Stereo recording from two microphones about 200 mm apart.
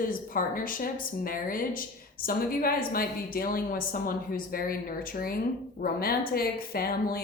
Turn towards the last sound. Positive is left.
turn(degrees=50)  # may be behind; listen again after turning